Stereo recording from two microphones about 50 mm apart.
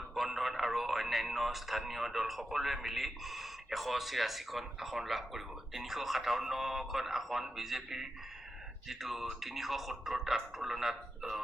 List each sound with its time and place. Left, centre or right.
0.1 s speech: centre